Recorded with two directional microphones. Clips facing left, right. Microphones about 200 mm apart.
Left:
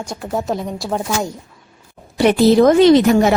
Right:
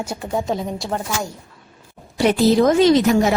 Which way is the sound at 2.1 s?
65° left (ahead or behind).